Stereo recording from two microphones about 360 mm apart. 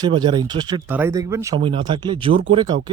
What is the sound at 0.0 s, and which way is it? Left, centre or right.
Speech, centre.